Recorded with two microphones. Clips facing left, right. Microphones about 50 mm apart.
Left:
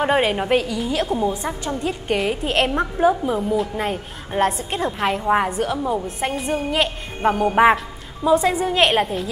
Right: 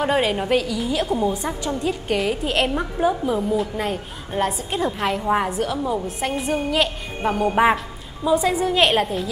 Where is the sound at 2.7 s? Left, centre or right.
Centre.